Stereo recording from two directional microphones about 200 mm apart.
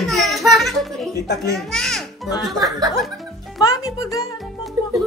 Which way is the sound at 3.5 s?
Centre (ahead or behind).